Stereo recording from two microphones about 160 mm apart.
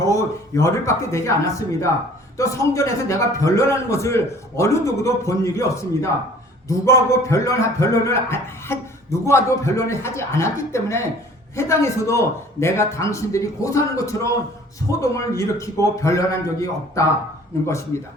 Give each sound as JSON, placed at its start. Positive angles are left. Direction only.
{"t": 0.0, "sound": "a man's voice", "side_deg": 20}